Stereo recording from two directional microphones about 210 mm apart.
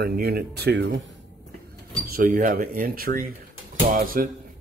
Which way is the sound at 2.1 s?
40° right (ahead or behind).